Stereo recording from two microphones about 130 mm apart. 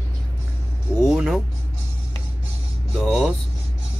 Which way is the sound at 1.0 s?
5° right (ahead or behind).